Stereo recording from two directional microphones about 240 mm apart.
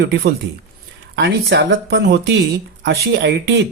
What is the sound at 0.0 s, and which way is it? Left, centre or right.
Speech, right.